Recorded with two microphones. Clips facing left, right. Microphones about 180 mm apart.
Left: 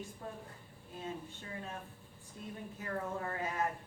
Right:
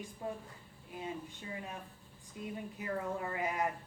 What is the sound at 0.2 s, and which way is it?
Speech, 15° right (ahead or behind).